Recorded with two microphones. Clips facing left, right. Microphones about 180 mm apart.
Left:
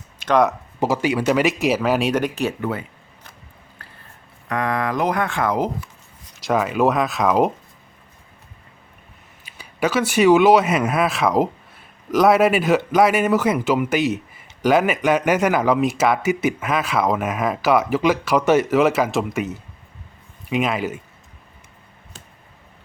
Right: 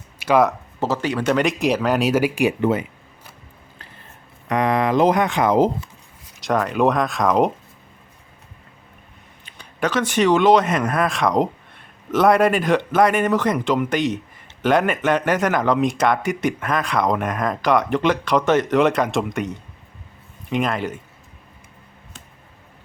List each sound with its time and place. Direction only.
0.2 s speech: 5° right (ahead or behind)
0.8 s speech: 10° left (ahead or behind); by 2.6 s 10° right (ahead or behind)
2.6 s speech: 25° right (ahead or behind)
4.4 s speech: 20° right (ahead or behind)
6.4 s speech: 5° left (ahead or behind)
9.5 s speech: 10° left (ahead or behind)